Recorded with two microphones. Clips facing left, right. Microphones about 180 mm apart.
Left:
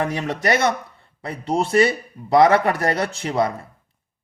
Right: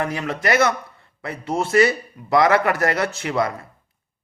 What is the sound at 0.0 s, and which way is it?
Speech, 30° left (ahead or behind).